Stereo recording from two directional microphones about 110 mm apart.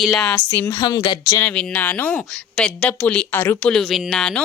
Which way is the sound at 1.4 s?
15° left (ahead or behind).